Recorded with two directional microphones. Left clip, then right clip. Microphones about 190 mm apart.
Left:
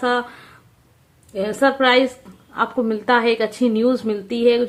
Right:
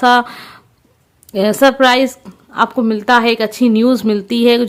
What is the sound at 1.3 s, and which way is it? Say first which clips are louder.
A woman's voice: right 7 dB; 40° right (ahead or behind).